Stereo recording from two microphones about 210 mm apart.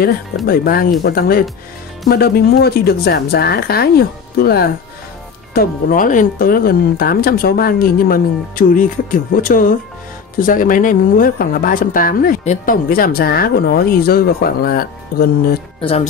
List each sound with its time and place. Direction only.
0.5 s a woman's voice: 45° left (ahead or behind)
15.8 s speech: 25° left (ahead or behind)